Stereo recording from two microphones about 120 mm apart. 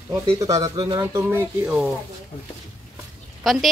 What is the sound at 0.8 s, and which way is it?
Speech, 30° right (ahead or behind).